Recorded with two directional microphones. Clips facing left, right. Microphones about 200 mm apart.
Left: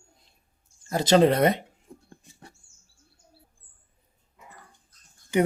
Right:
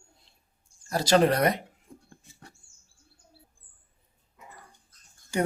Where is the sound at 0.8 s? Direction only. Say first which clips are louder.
Left 3 dB; 25° left (ahead or behind).